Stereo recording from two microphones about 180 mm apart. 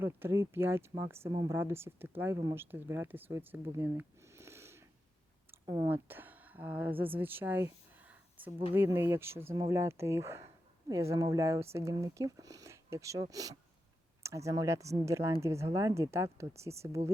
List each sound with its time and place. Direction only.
0.0 s speech: 15° right (ahead or behind)